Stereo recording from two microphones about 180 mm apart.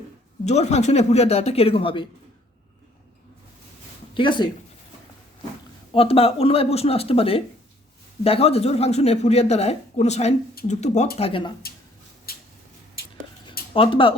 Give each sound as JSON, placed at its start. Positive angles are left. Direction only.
{"t": 0.4, "sound": "speech", "side_deg": 40}
{"t": 4.1, "sound": "speech", "side_deg": 25}
{"t": 5.9, "sound": "speech", "side_deg": 30}
{"t": 12.3, "sound": "a sound", "side_deg": 55}
{"t": 13.7, "sound": "speech", "side_deg": 30}